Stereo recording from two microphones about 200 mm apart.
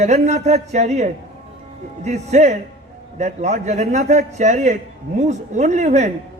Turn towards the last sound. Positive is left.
turn(degrees=-35)  # may be behind; listen again after turning